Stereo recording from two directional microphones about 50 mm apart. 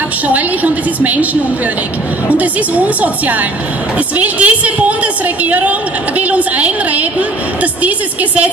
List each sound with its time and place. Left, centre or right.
0.3 s a woman's voice: right